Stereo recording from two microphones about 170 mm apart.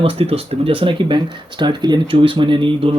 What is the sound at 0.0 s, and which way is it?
Speech, 35° right (ahead or behind).